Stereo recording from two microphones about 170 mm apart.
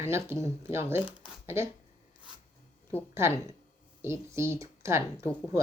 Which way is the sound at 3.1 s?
15° right (ahead or behind).